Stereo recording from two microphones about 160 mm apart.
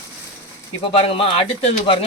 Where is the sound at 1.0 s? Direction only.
35° left (ahead or behind).